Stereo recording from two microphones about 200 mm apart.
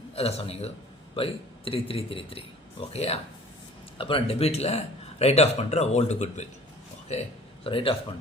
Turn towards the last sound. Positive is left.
turn(degrees=25)  # may be behind; listen again after turning